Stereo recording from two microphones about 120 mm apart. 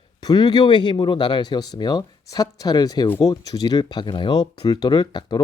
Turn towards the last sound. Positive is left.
turn(degrees=35)  # may be behind; listen again after turning